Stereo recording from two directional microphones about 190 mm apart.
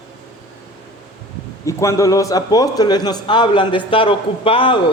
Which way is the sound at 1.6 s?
15° left (ahead or behind).